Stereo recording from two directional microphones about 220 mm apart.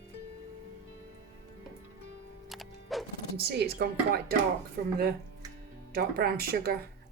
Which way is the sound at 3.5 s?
45° right (ahead or behind).